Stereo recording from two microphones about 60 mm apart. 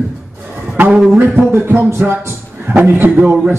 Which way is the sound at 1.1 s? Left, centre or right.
Right.